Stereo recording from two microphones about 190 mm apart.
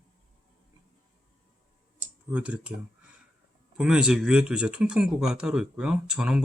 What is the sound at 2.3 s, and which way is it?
Speech, 5° right (ahead or behind).